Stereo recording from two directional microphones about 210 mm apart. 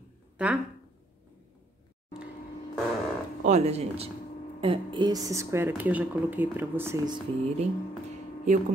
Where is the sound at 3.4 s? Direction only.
30° right (ahead or behind); by 7.2 s 15° right (ahead or behind).